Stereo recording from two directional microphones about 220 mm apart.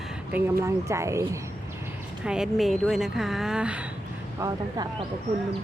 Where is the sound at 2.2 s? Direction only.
5° right (ahead or behind).